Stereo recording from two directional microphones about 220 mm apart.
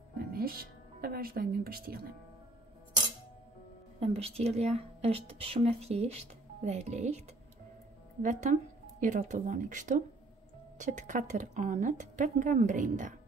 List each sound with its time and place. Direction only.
0.2 s speech: 45° right (ahead or behind)
4.0 s a woman's voice: 25° right (ahead or behind)